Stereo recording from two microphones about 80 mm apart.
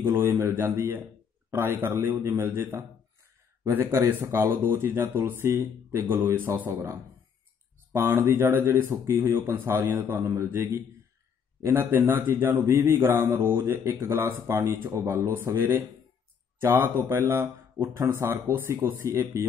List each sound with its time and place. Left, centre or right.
0.0 s speech: right
6.7 s speech: right
7.9 s speech: right
15.2 s speech: right